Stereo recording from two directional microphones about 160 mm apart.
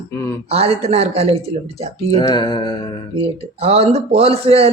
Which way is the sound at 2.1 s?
25° left (ahead or behind).